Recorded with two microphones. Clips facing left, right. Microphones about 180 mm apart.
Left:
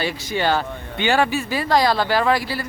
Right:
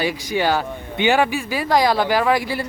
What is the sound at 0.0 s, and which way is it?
Speech, 10° right (ahead or behind).